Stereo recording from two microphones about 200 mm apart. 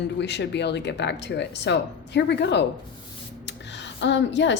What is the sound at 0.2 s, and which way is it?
A woman's voice, 60° left (ahead or behind).